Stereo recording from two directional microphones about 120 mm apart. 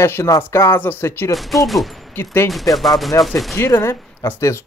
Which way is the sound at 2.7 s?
Centre (ahead or behind).